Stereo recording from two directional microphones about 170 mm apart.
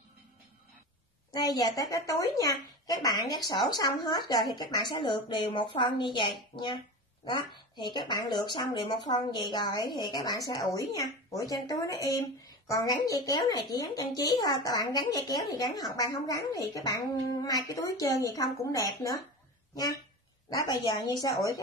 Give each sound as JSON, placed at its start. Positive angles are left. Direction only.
{"t": 1.3, "sound": "speech", "side_deg": 20}
{"t": 20.4, "sound": "speech", "side_deg": 20}